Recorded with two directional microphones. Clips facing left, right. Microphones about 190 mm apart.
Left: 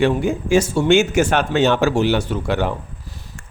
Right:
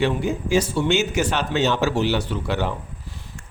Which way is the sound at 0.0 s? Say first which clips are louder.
Left 4 dB; 50° left (ahead or behind).